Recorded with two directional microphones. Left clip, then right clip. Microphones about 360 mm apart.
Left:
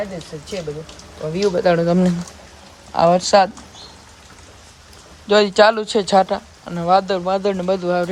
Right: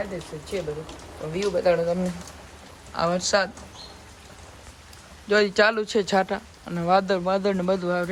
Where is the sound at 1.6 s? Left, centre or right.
Left.